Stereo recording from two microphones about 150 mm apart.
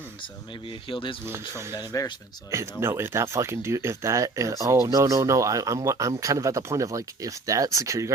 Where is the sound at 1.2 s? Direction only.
15° right (ahead or behind).